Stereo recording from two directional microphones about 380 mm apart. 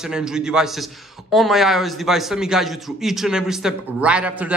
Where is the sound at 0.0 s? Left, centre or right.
Centre.